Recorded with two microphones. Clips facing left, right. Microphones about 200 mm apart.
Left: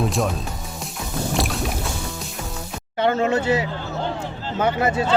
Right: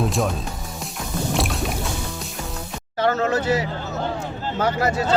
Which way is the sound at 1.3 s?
Centre (ahead or behind).